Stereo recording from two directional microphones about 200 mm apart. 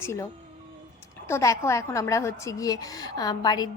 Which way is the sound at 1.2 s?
15° left (ahead or behind).